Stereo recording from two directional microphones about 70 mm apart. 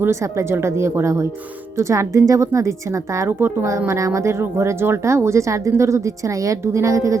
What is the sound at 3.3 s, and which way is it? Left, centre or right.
Speech, right.